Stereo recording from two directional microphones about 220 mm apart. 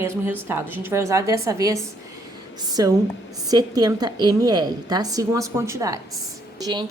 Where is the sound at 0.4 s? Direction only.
10° right (ahead or behind).